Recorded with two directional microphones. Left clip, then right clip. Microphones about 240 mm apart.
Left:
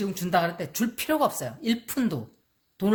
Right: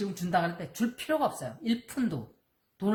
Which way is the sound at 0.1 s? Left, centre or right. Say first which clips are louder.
Left 5 dB; left.